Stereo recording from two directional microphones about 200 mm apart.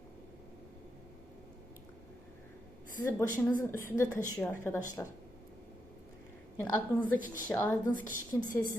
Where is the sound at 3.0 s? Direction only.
15° left (ahead or behind).